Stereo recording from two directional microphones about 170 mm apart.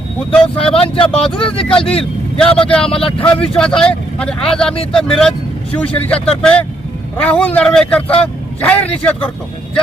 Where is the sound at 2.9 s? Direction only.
35° left (ahead or behind).